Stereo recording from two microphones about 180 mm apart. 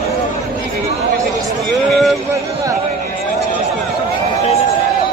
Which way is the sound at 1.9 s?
Centre (ahead or behind).